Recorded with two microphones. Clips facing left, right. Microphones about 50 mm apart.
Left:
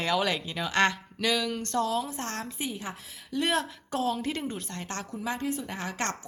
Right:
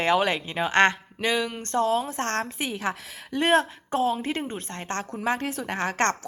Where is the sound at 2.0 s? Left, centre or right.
Right.